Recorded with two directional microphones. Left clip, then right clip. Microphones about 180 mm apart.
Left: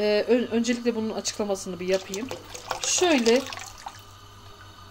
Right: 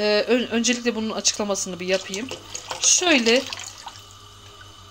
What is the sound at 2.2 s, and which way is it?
Speech, 20° left (ahead or behind).